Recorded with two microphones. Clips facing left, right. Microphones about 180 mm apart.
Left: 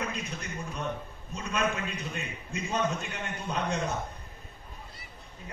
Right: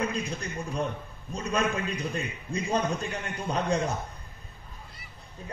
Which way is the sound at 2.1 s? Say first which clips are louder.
Right 5 dB; 35° right (ahead or behind).